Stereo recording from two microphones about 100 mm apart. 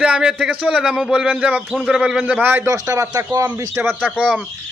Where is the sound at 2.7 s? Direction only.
30° right (ahead or behind).